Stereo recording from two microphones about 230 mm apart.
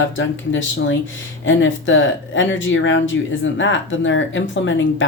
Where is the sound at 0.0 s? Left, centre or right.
Left.